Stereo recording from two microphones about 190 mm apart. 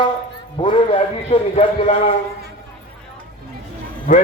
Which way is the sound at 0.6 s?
25° left (ahead or behind).